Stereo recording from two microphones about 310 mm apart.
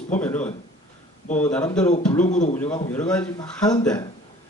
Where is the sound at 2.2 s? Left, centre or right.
Left.